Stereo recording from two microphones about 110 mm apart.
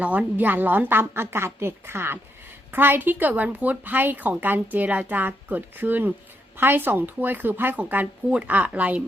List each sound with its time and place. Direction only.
0.0 s a woman's voice: 15° right (ahead or behind)